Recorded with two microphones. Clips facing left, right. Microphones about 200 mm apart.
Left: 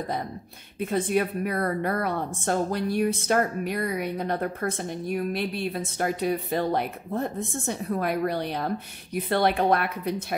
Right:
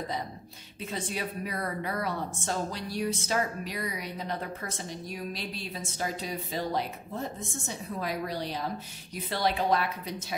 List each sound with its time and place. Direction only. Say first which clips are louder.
0.7 s a woman's voice: left 10 dB; 55° left (ahead or behind)